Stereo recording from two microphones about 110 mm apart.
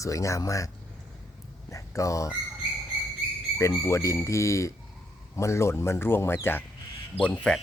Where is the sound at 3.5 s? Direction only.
25° left (ahead or behind).